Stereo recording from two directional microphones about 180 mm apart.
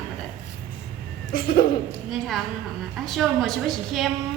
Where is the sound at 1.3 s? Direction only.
55° left (ahead or behind).